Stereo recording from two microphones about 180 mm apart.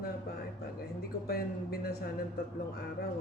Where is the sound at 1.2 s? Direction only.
55° left (ahead or behind).